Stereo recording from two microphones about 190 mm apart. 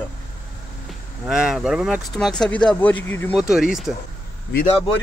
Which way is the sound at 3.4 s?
5° right (ahead or behind).